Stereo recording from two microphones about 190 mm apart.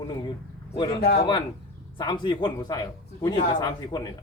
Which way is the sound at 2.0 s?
25° left (ahead or behind).